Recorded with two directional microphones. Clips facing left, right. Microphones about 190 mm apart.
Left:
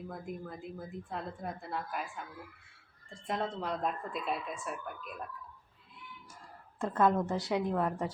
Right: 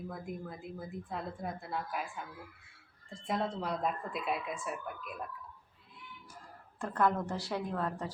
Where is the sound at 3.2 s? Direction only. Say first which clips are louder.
Even; centre (ahead or behind).